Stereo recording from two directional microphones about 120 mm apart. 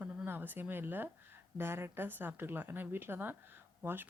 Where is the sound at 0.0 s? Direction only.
15° right (ahead or behind).